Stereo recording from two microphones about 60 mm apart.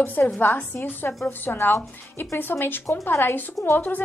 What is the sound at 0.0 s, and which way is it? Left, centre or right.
A woman's voice, left.